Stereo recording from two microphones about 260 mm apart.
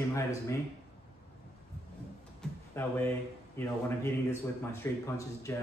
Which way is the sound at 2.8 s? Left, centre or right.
Centre.